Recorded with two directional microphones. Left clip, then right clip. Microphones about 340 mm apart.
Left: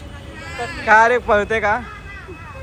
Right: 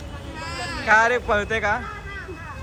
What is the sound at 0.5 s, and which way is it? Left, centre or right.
Speech, right.